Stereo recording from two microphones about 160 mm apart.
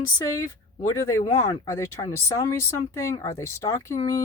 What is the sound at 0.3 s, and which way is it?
Speech, 20° left (ahead or behind).